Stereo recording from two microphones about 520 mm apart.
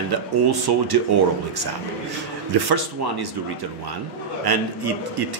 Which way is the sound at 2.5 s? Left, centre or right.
Right.